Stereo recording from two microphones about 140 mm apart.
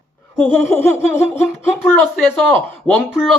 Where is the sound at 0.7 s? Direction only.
15° left (ahead or behind).